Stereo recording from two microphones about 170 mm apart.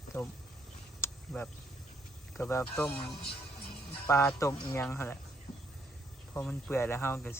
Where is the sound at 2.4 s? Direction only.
15° left (ahead or behind).